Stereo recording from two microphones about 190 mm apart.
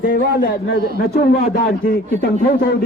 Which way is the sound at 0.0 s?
50° left (ahead or behind).